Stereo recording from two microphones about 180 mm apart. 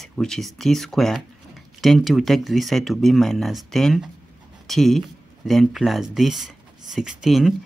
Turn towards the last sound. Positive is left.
turn(degrees=0)  # may be behind; listen again after turning